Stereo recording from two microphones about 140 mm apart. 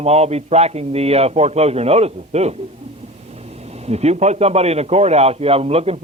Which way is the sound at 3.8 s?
50° right (ahead or behind).